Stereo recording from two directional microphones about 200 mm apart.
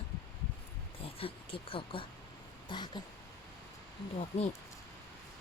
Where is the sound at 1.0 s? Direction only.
30° left (ahead or behind).